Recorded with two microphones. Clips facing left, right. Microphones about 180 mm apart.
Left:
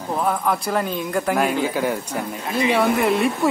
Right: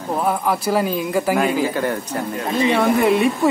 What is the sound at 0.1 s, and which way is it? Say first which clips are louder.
Speech: right 2 dB; 5° right (ahead or behind).